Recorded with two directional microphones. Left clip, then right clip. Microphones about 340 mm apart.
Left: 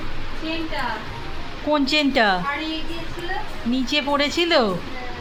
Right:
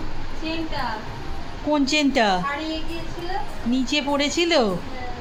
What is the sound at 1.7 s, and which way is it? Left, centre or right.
Speech, centre.